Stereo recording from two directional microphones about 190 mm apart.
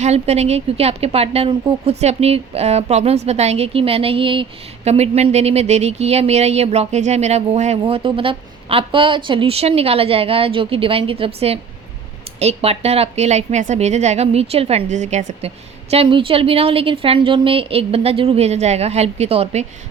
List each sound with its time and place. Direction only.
0.0 s a woman's voice: 35° right (ahead or behind)